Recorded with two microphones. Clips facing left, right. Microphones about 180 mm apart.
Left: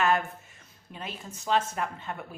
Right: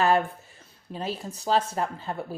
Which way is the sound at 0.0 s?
35° right (ahead or behind).